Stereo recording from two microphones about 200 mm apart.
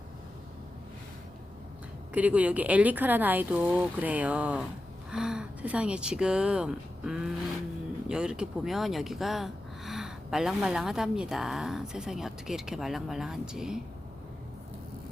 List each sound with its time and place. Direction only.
2.1 s speech: 5° right (ahead or behind)